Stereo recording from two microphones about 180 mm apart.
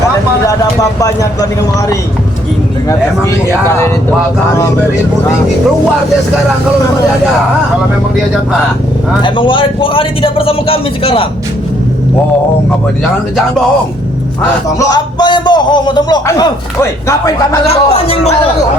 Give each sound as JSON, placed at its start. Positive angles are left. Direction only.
{"t": 0.4, "sound": "a man's voice", "side_deg": 20}
{"t": 9.2, "sound": "a man's voice", "side_deg": 25}
{"t": 14.8, "sound": "a man's voice", "side_deg": 20}
{"t": 17.7, "sound": "a man's voice", "side_deg": 35}